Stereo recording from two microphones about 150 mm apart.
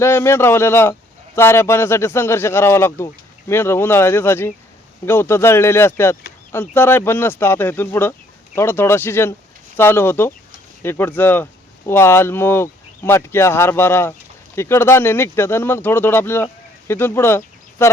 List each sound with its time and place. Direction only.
0.0 s speech: 15° left (ahead or behind)